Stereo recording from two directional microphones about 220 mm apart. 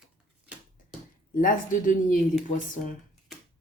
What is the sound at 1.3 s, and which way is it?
Speech, 35° left (ahead or behind).